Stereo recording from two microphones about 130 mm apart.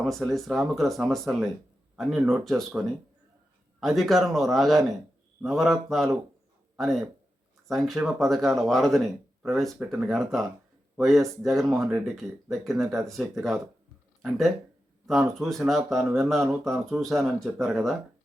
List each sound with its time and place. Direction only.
0.0 s speech: centre (ahead or behind)